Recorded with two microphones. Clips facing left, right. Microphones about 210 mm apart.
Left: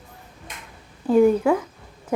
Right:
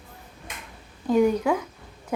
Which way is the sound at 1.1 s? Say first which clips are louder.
Left 4 dB; 5° left (ahead or behind).